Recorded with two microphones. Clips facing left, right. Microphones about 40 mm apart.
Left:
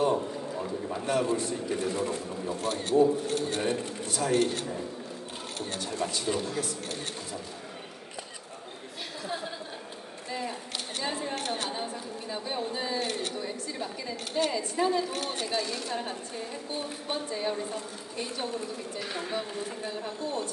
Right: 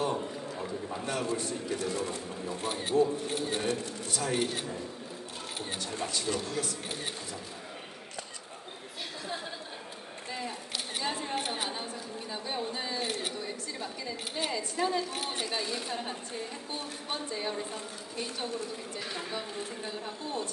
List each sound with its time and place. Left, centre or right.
0.0 s a sound: centre
1.3 s speech: centre
1.7 s speech: centre
2.6 s speech: centre
3.6 s speech: left
4.3 s speech: centre
6.0 s speech: centre
11.1 s a sound: centre
11.7 s a sound: centre
14.4 s speech: centre
15.1 s speech: centre
15.9 s a woman's voice: centre